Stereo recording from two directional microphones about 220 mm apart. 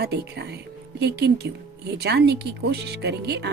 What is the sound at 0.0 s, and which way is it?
Speech, 50° right (ahead or behind).